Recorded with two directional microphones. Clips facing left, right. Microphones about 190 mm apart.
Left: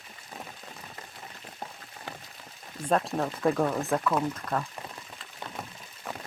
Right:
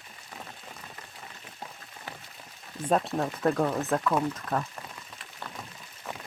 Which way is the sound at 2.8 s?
Centre (ahead or behind).